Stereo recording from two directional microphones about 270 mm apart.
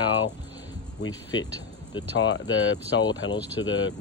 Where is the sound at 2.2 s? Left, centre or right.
Left.